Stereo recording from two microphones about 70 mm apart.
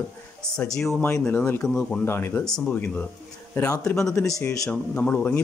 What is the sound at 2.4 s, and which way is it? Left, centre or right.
Speech, centre.